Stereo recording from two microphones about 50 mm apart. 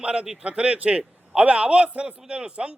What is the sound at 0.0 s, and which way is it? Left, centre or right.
A man's voice, centre.